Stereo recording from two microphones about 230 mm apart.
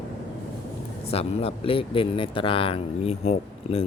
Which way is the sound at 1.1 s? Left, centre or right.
Left.